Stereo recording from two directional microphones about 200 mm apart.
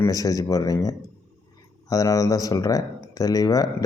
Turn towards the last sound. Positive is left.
turn(degrees=20)  # may be behind; listen again after turning